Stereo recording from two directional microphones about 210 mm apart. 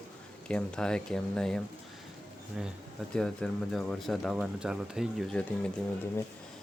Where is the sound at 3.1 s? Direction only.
5° left (ahead or behind).